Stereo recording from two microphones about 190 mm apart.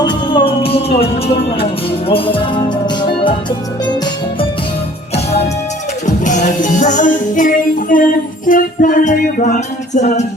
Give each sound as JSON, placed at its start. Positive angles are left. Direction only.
{"t": 0.0, "sound": "music", "side_deg": 25}
{"t": 6.2, "sound": "music", "side_deg": 40}